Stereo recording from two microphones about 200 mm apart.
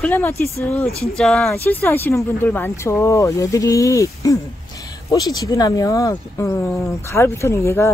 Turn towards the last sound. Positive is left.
turn(degrees=15)  # may be behind; listen again after turning